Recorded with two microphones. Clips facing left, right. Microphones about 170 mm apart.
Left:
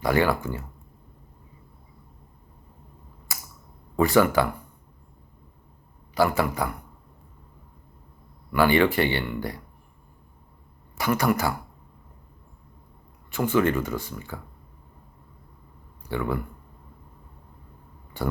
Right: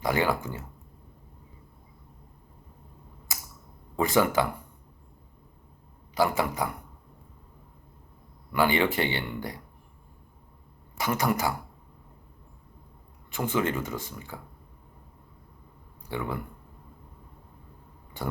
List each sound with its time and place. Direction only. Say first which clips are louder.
0.0 s speech: left 4 dB; 15° right (ahead or behind)
3.9 s speech: left 4 dB; 20° right (ahead or behind)
6.1 s speech: left 3 dB; 20° right (ahead or behind)
8.5 s speech: left 4 dB; 15° right (ahead or behind)
10.9 s speech: left 4 dB; 20° right (ahead or behind)
13.3 s speech: left 5 dB; 20° right (ahead or behind)
16.0 s speech: left 5 dB; 15° right (ahead or behind)